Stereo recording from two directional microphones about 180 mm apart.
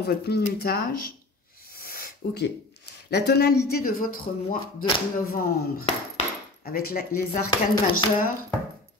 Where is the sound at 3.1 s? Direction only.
65° left (ahead or behind).